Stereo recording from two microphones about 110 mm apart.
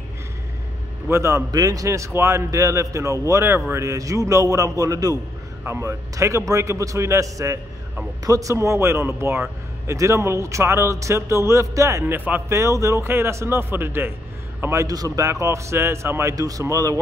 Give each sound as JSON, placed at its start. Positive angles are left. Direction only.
{"t": 1.0, "sound": "a man's voice", "side_deg": -25}